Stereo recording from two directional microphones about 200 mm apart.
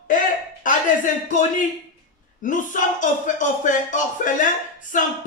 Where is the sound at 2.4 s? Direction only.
40° left (ahead or behind).